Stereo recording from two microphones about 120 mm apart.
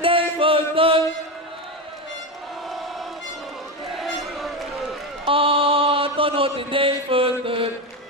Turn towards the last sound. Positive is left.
turn(degrees=-50)  # may be behind; listen again after turning